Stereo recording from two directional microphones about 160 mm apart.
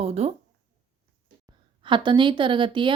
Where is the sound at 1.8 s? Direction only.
30° right (ahead or behind).